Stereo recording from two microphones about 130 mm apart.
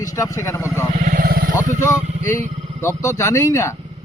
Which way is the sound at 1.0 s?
90° right.